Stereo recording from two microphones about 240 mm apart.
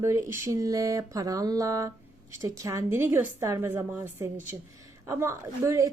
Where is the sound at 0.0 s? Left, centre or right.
Centre.